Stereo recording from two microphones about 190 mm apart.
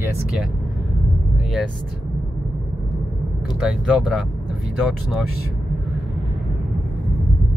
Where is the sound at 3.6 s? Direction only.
5° right (ahead or behind).